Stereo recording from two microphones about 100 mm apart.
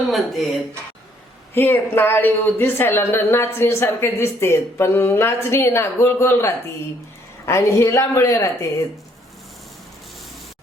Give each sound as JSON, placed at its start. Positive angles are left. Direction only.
{"t": 0.1, "sound": "speech", "side_deg": 0}
{"t": 1.5, "sound": "a woman's voice", "side_deg": 20}